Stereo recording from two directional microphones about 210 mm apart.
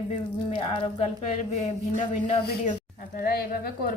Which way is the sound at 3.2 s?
45° left (ahead or behind).